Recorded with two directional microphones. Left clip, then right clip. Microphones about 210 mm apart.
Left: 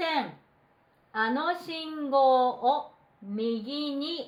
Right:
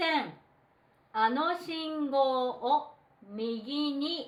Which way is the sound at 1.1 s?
20° left (ahead or behind).